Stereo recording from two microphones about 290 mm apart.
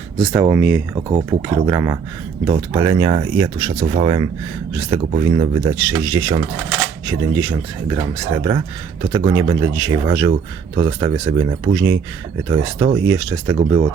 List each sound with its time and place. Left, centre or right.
0.2 s speech: centre
0.5 s speech: centre